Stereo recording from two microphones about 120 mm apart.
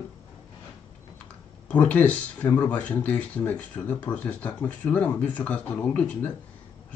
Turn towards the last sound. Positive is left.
turn(degrees=10)  # may be behind; listen again after turning